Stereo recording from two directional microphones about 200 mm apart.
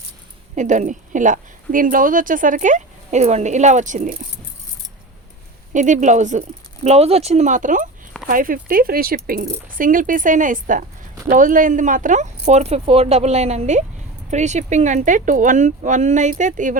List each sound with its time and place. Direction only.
0.5 s a woman's voice: 40° right (ahead or behind)
5.7 s a woman's voice: 40° right (ahead or behind)